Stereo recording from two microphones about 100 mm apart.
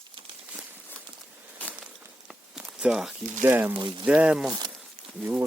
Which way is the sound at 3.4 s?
20° right (ahead or behind).